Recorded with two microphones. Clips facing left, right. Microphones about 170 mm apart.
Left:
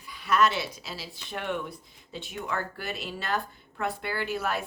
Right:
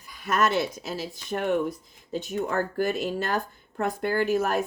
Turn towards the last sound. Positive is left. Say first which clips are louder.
# right 7 dB
turn(degrees=-45)  # may be behind; listen again after turning